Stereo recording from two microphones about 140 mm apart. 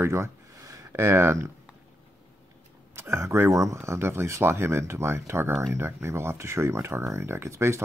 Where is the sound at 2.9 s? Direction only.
20° right (ahead or behind).